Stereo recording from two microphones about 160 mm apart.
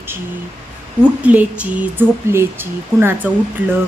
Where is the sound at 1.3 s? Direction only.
10° right (ahead or behind).